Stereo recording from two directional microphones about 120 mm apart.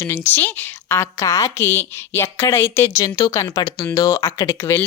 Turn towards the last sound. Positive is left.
turn(degrees=20)  # may be behind; listen again after turning